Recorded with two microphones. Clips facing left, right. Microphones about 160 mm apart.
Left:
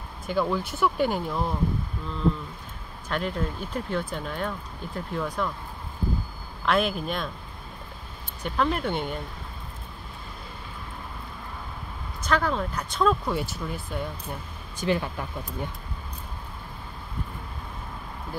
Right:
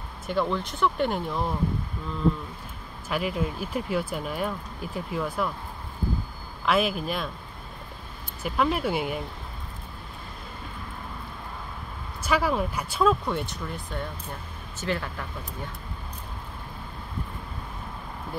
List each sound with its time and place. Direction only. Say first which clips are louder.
0.3 s speech: left 1 dB; 5° left (ahead or behind)
3.1 s speech: right 1 dB; 5° right (ahead or behind)
6.6 s speech: even; 5° right (ahead or behind)
8.4 s speech: right 1 dB; 5° right (ahead or behind)
12.2 s speech: right 1 dB; 5° right (ahead or behind)
14.8 s speech: left 4 dB; 15° left (ahead or behind)